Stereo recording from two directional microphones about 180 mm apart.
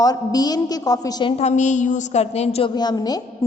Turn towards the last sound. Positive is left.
turn(degrees=20)  # may be behind; listen again after turning